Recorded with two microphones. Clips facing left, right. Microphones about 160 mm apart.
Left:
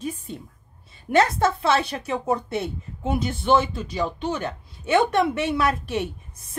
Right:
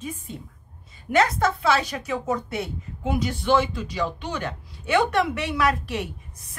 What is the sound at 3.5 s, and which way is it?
A woman's voice, 25° left (ahead or behind).